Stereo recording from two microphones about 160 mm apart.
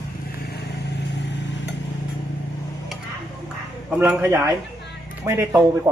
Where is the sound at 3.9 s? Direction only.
10° right (ahead or behind).